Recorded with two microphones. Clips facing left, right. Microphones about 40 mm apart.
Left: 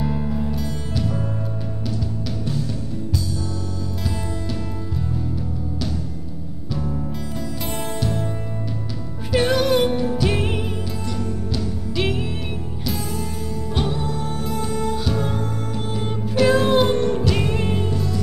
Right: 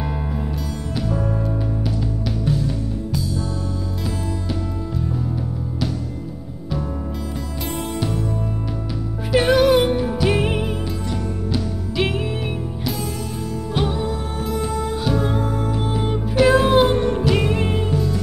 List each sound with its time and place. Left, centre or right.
0.0 s music: centre
1.0 s music: right
1.9 s music: centre
9.3 s music: centre
13.8 s music: centre